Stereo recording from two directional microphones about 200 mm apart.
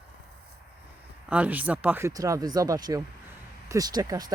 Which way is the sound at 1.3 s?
5° right (ahead or behind).